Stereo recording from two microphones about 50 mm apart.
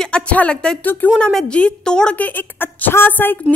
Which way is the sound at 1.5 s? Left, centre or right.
Centre.